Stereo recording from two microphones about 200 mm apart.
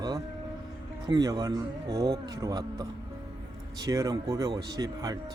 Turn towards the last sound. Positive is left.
turn(degrees=-20)  # may be behind; listen again after turning